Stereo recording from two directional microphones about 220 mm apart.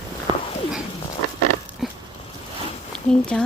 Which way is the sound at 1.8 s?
Centre (ahead or behind).